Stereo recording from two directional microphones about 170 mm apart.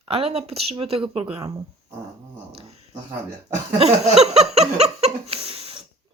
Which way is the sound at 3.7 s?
40° right (ahead or behind).